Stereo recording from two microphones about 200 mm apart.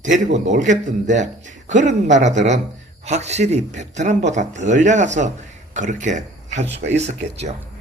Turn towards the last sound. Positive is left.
turn(degrees=-35)  # may be behind; listen again after turning